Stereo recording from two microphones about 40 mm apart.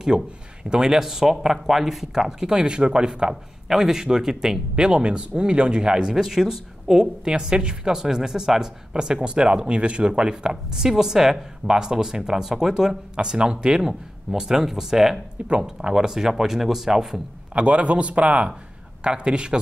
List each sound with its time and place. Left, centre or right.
0.1 s speech: centre
7.2 s speech: right
17.6 s a man's voice: right